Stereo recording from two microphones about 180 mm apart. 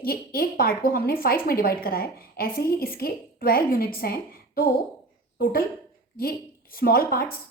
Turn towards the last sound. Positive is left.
turn(degrees=55)  # may be behind; listen again after turning